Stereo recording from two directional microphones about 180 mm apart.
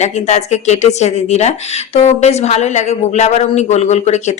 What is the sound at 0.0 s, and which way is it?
Speech, 40° left (ahead or behind).